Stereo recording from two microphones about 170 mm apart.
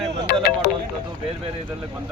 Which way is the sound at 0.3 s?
65° left (ahead or behind).